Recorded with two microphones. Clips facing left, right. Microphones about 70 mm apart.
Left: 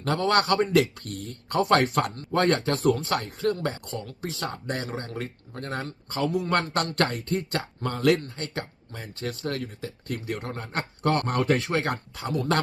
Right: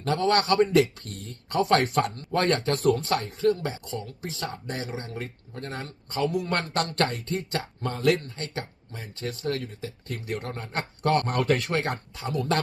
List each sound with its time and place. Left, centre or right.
0.0 s a man's voice: left